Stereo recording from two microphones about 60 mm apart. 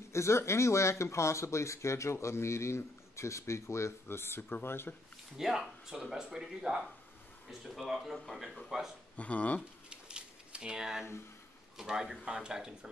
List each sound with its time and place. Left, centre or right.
0.1 s speech: left
5.4 s speech: centre
9.1 s speech: left
9.6 s a sound: centre
11.7 s speech: centre